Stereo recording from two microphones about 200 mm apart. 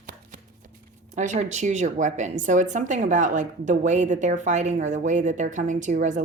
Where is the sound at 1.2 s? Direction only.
35° right (ahead or behind).